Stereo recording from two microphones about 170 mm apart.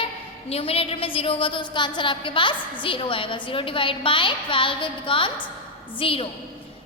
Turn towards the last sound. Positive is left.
turn(degrees=35)  # may be behind; listen again after turning